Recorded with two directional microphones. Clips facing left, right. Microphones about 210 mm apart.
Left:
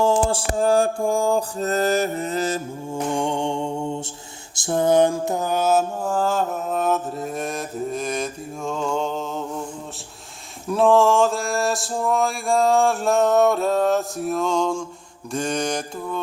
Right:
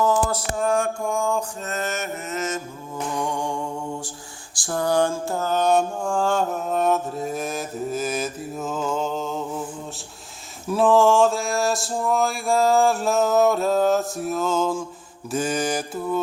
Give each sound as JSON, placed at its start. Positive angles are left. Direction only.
{"t": 0.0, "sound": "mantra", "side_deg": 30}
{"t": 10.7, "sound": "mantra", "side_deg": 0}